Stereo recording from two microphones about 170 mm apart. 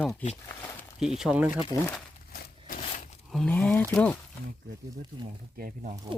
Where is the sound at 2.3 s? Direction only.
60° left (ahead or behind).